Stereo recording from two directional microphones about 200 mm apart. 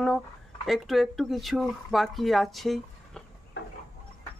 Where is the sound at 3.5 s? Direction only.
60° left (ahead or behind).